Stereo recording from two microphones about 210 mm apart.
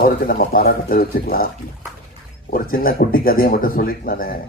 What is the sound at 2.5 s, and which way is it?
Speech, 45° left (ahead or behind).